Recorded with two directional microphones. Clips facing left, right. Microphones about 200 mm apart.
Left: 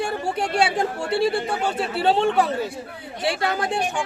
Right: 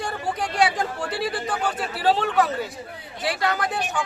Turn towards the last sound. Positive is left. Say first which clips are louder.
# left 2 dB
turn(degrees=25)  # may be behind; listen again after turning